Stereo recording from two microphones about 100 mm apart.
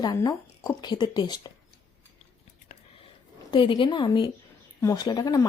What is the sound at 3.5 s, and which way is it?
Speech, 55° left (ahead or behind).